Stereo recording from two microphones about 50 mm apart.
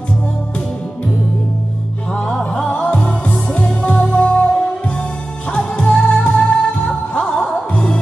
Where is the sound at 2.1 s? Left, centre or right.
Centre.